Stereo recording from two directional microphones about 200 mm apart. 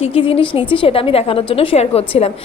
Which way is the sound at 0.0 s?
30° left (ahead or behind).